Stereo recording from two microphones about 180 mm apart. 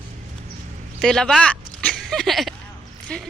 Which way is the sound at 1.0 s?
5° left (ahead or behind).